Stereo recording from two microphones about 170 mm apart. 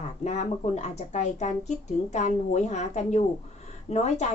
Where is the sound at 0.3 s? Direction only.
40° left (ahead or behind).